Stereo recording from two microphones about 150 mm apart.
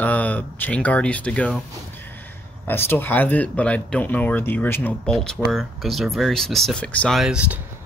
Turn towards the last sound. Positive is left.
turn(degrees=-5)  # may be behind; listen again after turning